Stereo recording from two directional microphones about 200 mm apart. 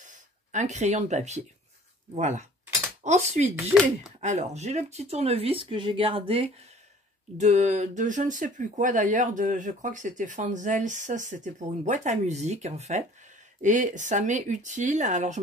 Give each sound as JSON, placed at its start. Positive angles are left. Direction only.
{"t": 0.0, "sound": "speech", "side_deg": -40}